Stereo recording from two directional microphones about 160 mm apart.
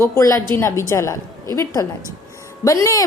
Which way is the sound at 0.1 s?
20° left (ahead or behind).